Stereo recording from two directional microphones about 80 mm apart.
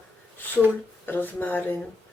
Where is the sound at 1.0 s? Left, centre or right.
Left.